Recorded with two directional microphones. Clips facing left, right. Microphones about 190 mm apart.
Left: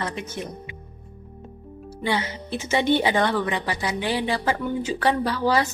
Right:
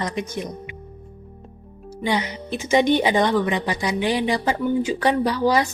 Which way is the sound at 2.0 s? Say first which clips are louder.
Right 2 dB; 15° right (ahead or behind).